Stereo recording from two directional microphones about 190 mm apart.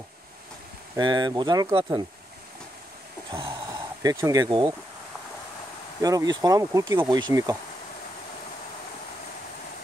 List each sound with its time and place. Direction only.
0.9 s bee: 20° right (ahead or behind)
3.3 s speech: 25° right (ahead or behind)
5.9 s bee: 20° right (ahead or behind)